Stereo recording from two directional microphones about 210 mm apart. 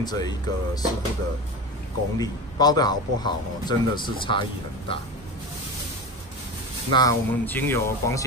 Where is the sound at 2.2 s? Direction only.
20° left (ahead or behind).